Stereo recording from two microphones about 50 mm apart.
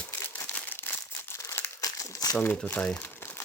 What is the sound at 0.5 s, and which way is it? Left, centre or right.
Crumpling, left.